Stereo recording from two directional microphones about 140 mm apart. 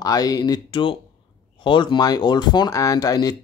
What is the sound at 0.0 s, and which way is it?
Speech, 25° left (ahead or behind).